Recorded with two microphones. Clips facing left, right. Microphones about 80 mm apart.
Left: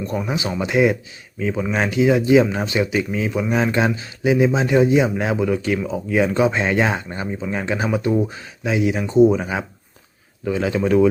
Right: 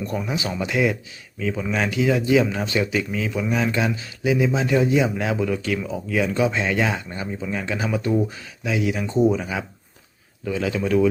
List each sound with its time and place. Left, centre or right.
0.0 s speech: left